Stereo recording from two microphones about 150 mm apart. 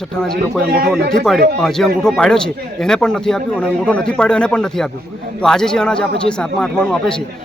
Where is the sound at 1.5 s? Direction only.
5° left (ahead or behind).